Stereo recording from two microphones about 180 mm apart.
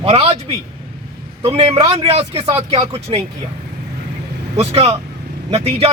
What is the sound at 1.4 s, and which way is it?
A man's voice, 30° right (ahead or behind).